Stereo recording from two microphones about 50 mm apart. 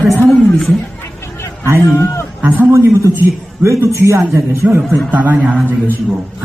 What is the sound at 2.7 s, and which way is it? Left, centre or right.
Speech, right.